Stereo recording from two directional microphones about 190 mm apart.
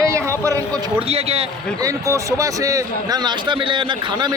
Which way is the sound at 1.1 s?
30° right (ahead or behind).